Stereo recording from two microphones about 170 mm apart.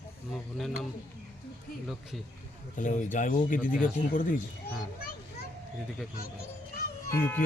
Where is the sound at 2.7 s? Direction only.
50° left (ahead or behind).